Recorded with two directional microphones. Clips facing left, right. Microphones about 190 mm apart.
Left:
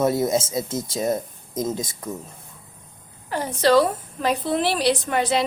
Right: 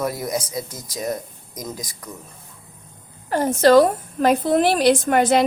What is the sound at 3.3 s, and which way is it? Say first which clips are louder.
A woman's voice: right 4 dB; 45° right (ahead or behind).